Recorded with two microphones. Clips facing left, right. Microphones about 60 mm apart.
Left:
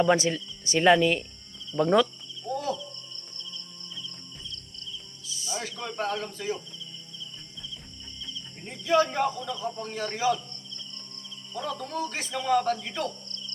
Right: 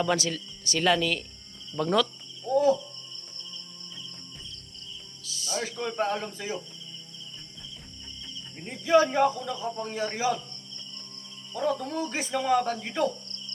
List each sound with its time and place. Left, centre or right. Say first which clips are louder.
0.0 s speech: left 4 dB; left
2.5 s owl: right 8 dB; centre
5.2 s cricket: right 3 dB; left
5.8 s speech: right 3 dB; centre
6.2 s cricket: left 2 dB; centre
8.2 s cricket: left 1 dB; centre
9.5 s speech: right 1 dB; centre
11.8 s speech: right 1 dB; centre